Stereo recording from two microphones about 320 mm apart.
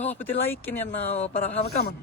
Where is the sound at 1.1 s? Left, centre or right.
Left.